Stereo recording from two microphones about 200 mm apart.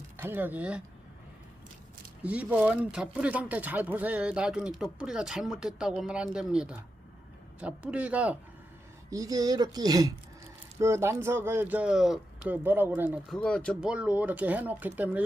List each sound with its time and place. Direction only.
0.2 s speech: 10° right (ahead or behind)
2.2 s speech: 5° right (ahead or behind)
9.0 s speech: 15° right (ahead or behind)
13.3 s speech: 5° left (ahead or behind)